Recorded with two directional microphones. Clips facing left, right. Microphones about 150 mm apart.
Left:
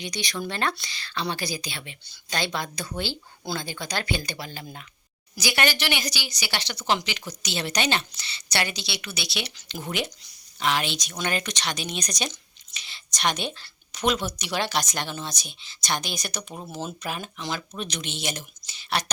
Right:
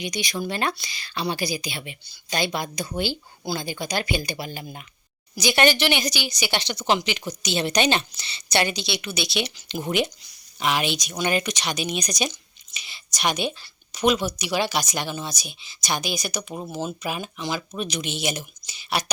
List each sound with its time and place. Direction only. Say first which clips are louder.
0.0 s a woman's voice: right 3 dB; 10° right (ahead or behind)